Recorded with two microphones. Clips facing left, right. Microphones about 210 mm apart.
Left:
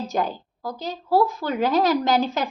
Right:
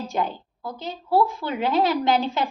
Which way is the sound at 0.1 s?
40° left (ahead or behind).